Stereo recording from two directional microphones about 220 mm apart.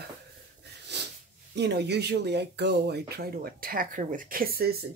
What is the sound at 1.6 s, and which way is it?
Speech, 50° right (ahead or behind).